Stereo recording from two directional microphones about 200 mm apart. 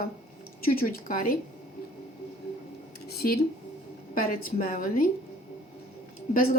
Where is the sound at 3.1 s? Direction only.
50° left (ahead or behind).